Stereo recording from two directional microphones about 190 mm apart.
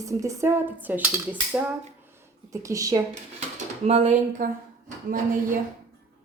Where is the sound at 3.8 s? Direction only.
35° right (ahead or behind).